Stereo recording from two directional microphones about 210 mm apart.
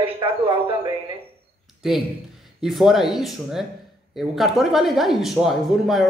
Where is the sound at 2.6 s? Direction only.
Centre (ahead or behind).